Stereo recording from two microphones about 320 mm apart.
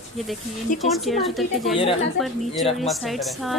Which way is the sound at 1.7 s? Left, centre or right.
Centre.